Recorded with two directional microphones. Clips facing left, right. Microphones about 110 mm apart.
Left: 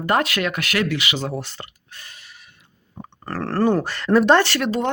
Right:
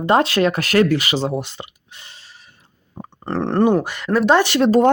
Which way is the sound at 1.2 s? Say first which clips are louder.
Right 5 dB; 20° right (ahead or behind).